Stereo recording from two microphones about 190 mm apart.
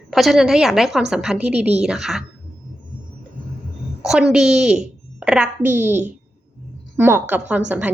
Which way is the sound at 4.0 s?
5° right (ahead or behind).